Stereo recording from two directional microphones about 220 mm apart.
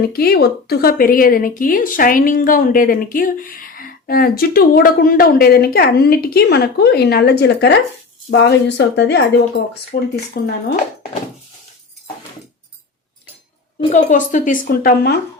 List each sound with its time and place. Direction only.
0.1 s a woman's voice: 45° left (ahead or behind)
13.7 s a woman's voice: 35° left (ahead or behind)